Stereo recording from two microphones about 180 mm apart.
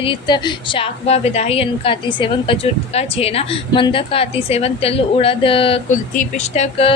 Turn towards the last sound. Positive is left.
turn(degrees=35)  # may be behind; listen again after turning